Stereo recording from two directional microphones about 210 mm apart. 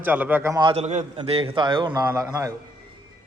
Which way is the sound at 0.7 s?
30° right (ahead or behind).